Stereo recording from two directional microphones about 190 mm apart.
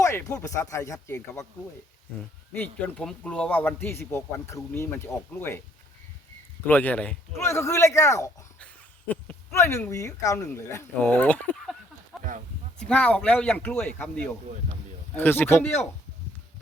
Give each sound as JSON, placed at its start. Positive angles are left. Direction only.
{"t": 0.0, "sound": "a man's voice", "side_deg": 15}
{"t": 2.5, "sound": "a man's voice", "side_deg": 10}
{"t": 6.7, "sound": "a man's voice", "side_deg": 10}